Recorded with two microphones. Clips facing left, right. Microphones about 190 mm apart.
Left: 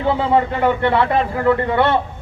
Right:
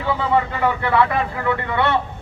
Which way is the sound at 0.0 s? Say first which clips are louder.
Left 3 dB; 30° left (ahead or behind).